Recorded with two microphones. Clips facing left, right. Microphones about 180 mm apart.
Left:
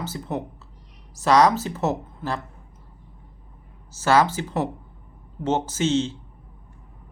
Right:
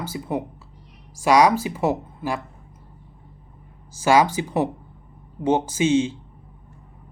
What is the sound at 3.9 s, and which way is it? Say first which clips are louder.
Speech: right 2 dB; 15° right (ahead or behind).